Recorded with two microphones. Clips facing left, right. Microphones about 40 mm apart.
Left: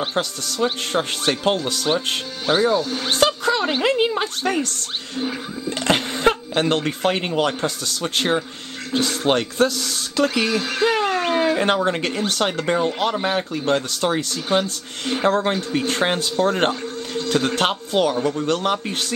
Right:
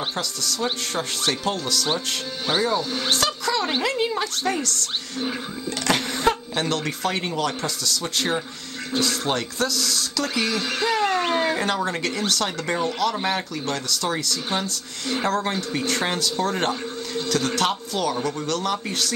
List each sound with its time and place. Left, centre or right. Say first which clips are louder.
0.1 s speech: left 4 dB; left
2.4 s speech: left 5 dB; centre
3.1 s a sound: left 6 dB; left
3.8 s speech: left 4 dB; left
10.5 s speech: left 4 dB; centre
11.1 s a sound: left 3 dB; centre
11.6 s speech: left 4 dB; left